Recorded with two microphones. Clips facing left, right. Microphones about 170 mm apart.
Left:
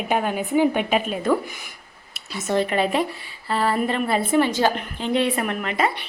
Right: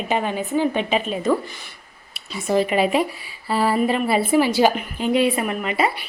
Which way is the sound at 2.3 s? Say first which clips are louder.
Right 2 dB; centre (ahead or behind).